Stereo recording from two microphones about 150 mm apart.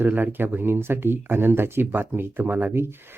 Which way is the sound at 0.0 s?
10° right (ahead or behind).